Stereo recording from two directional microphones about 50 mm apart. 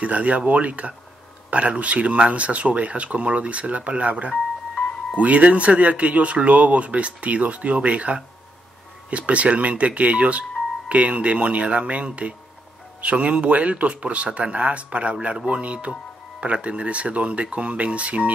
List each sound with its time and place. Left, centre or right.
0.0 s speech: right